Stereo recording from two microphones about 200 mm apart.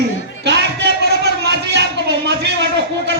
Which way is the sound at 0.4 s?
60° right (ahead or behind).